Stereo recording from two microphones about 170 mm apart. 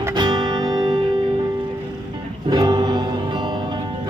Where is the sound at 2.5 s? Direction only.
25° right (ahead or behind).